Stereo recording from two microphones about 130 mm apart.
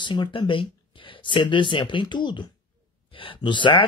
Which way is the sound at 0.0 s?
35° left (ahead or behind).